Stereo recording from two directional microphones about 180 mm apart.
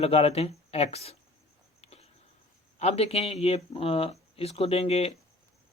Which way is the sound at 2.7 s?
35° left (ahead or behind).